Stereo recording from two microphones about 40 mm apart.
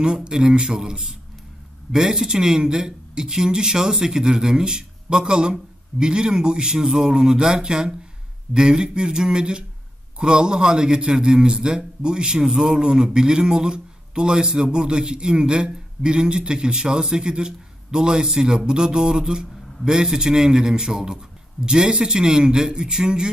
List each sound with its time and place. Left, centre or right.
0.0 s speech: right